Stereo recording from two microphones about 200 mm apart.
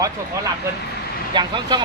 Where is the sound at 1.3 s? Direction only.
20° right (ahead or behind).